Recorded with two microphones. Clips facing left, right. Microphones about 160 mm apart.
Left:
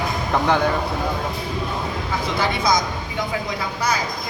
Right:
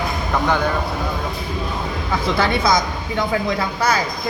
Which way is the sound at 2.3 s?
60° right (ahead or behind).